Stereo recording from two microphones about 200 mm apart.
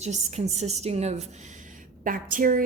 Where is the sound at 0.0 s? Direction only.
35° right (ahead or behind).